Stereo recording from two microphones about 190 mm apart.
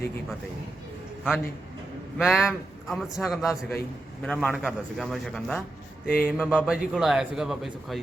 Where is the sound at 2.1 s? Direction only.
Centre (ahead or behind).